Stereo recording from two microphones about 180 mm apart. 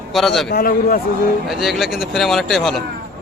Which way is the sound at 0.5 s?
55° left (ahead or behind).